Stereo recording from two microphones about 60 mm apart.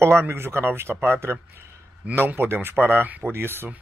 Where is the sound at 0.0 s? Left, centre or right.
Right.